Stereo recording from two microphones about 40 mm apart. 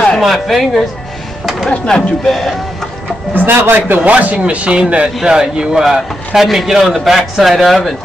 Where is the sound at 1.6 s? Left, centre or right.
Centre.